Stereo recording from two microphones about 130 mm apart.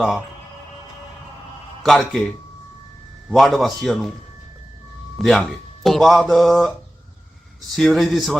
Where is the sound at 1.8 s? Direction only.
Centre (ahead or behind).